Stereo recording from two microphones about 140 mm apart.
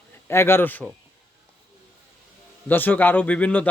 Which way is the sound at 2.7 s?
15° left (ahead or behind).